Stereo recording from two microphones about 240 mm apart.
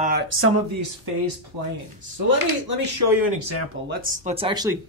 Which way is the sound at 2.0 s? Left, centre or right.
Right.